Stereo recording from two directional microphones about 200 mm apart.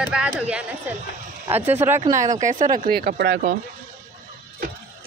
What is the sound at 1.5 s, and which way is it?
Speech, 10° right (ahead or behind).